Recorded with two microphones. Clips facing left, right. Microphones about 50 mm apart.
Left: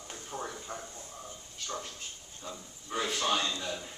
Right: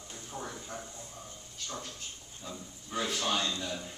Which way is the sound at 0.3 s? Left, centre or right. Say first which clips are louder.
Left 2 dB; left.